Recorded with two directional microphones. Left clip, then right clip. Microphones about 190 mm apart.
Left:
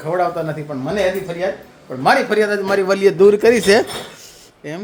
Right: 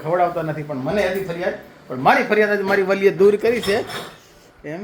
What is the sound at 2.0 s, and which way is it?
A man's voice, 10° left (ahead or behind).